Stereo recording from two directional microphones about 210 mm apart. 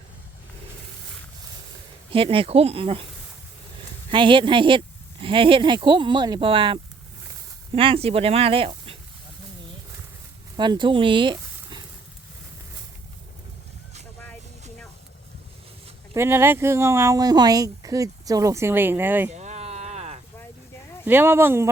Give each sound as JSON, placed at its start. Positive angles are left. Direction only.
{"t": 2.1, "sound": "speech", "side_deg": -25}
{"t": 4.1, "sound": "speech", "side_deg": -25}
{"t": 10.6, "sound": "speech", "side_deg": -20}
{"t": 16.1, "sound": "speech", "side_deg": -10}
{"t": 19.3, "sound": "a sound", "side_deg": -30}
{"t": 21.0, "sound": "speech", "side_deg": -10}